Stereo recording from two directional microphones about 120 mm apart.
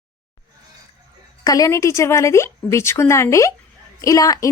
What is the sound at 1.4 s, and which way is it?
Speech, 30° left (ahead or behind).